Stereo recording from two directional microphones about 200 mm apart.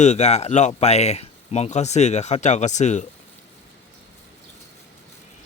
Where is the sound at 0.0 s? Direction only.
35° left (ahead or behind).